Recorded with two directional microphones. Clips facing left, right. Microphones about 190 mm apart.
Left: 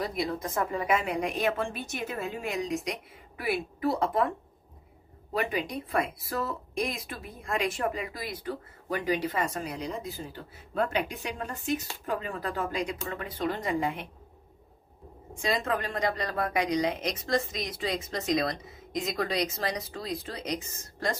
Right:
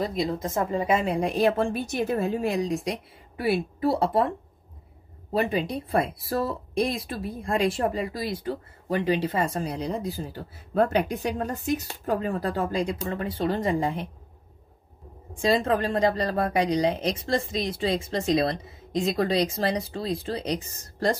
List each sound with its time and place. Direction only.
0.0 s speech: 25° right (ahead or behind)
5.3 s speech: 30° right (ahead or behind)
15.4 s speech: 35° right (ahead or behind)